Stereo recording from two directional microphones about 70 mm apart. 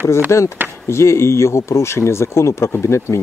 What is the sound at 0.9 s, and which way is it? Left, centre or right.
Speech, left.